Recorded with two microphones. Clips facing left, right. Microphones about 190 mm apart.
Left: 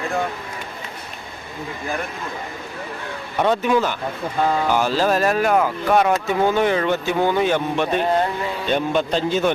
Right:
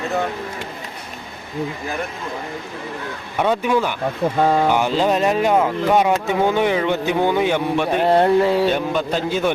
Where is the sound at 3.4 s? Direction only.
10° right (ahead or behind).